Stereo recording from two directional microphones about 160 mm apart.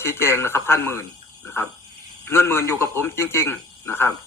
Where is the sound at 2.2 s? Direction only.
15° left (ahead or behind).